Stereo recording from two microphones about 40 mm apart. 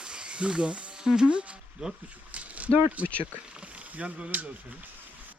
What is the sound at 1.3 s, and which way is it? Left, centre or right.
Speech, right.